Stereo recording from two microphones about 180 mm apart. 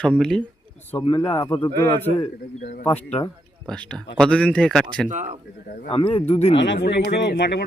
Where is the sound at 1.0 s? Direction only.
30° left (ahead or behind).